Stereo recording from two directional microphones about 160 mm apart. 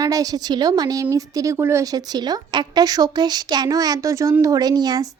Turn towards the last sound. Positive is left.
turn(degrees=-25)  # may be behind; listen again after turning